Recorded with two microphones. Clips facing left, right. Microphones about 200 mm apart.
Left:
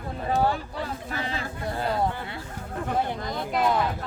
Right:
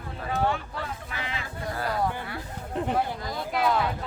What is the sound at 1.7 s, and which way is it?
Speech, 25° left (ahead or behind).